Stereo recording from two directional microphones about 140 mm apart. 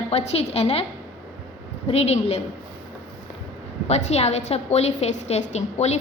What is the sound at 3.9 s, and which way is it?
A woman's voice, 50° left (ahead or behind).